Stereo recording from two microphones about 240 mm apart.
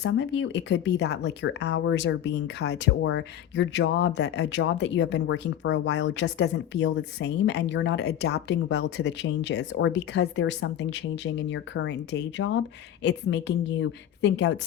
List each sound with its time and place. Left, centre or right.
0.0 s speech: left